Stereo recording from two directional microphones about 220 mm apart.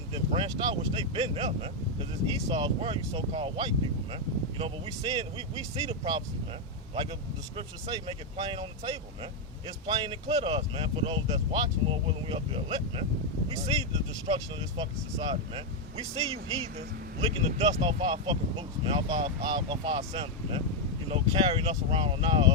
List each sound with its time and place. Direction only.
0.1 s speech: 25° right (ahead or behind)
7.5 s speech: 25° right (ahead or behind)
14.3 s speech: 20° right (ahead or behind)
17.2 s speech: 25° right (ahead or behind)